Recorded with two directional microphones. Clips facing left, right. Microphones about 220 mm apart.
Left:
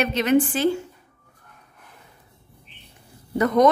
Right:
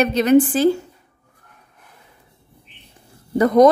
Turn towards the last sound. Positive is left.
turn(degrees=-35)  # may be behind; listen again after turning